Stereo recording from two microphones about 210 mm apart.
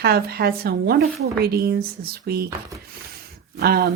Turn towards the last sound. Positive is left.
turn(degrees=-50)  # may be behind; listen again after turning